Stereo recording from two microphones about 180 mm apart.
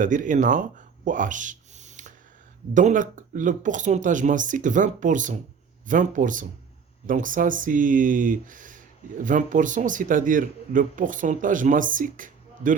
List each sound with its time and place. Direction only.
0.0 s speech: 45° right (ahead or behind)